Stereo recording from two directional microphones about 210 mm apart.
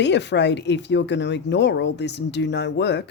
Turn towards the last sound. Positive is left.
turn(degrees=55)  # may be behind; listen again after turning